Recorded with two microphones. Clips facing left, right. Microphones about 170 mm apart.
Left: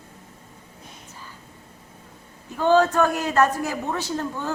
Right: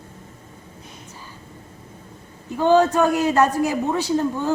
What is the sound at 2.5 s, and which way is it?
A man's voice, 15° right (ahead or behind).